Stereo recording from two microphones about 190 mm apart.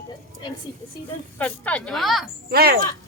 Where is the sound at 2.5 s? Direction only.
55° right (ahead or behind).